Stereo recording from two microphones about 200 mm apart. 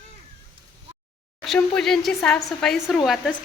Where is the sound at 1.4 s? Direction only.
Centre (ahead or behind).